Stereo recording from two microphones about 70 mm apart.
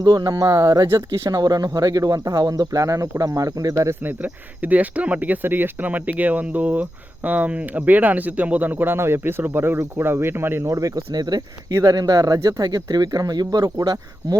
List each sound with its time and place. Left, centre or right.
0.0 s speech: right
4.0 s speech: right
10.7 s speech: right
11.1 s speech: right
11.8 s speech: right